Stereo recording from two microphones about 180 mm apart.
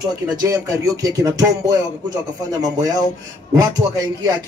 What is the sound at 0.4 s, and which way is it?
Speech, 20° right (ahead or behind).